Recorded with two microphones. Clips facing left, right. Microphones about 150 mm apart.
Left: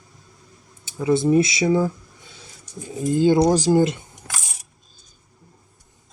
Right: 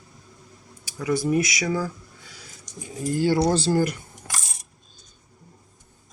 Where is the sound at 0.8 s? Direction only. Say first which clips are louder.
Left 5 dB; 25° left (ahead or behind).